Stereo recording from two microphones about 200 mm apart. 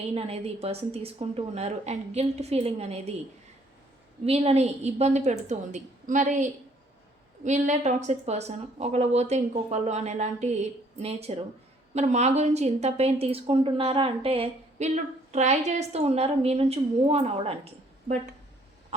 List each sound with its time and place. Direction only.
0.1 s a woman's voice: 30° right (ahead or behind)
4.3 s a woman's voice: 30° right (ahead or behind)